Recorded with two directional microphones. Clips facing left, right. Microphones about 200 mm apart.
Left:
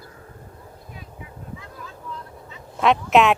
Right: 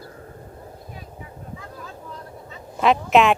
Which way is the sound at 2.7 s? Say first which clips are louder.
Even; centre (ahead or behind).